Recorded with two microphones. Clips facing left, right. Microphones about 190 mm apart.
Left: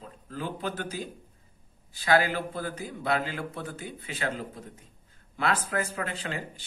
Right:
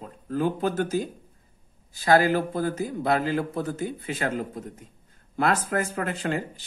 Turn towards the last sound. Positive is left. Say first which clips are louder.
# right 7 dB
turn(degrees=-45)  # may be behind; listen again after turning